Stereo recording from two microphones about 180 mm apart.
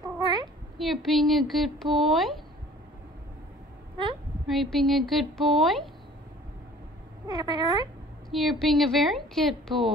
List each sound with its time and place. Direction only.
0.0 s a sound: 25° right (ahead or behind)
0.7 s speech: centre (ahead or behind)
4.5 s speech: centre (ahead or behind)
7.2 s speech: 25° right (ahead or behind)
8.3 s speech: centre (ahead or behind)